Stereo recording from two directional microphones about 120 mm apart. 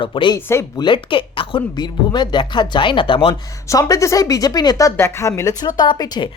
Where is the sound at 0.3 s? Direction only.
20° left (ahead or behind).